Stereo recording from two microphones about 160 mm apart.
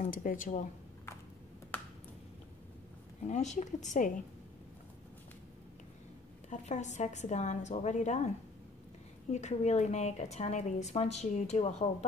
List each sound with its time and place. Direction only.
0.0 s speech: 55° left (ahead or behind)
1.7 s finger snapping: 10° left (ahead or behind)
3.3 s speech: 45° left (ahead or behind)
6.5 s speech: 45° left (ahead or behind)
9.3 s speech: 45° left (ahead or behind)